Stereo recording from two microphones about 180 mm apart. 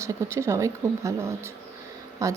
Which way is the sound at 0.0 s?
15° right (ahead or behind).